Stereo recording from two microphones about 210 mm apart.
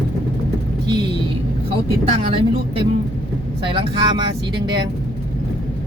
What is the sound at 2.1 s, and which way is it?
Speech, 25° right (ahead or behind).